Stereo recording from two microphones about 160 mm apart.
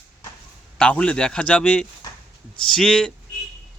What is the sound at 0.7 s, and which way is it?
Speech, 5° left (ahead or behind).